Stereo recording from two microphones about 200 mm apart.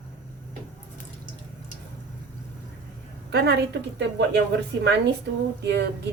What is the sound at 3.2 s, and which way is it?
Speech, 55° right (ahead or behind).